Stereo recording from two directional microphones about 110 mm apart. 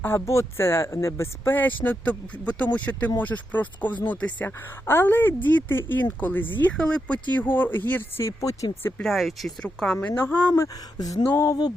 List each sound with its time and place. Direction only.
0.0 s a woman's voice: 25° left (ahead or behind)
9.0 s a woman's voice: centre (ahead or behind)
10.9 s a sound: 35° left (ahead or behind)
11.3 s speech: 25° left (ahead or behind)